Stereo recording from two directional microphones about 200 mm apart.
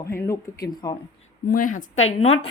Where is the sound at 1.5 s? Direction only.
45° left (ahead or behind).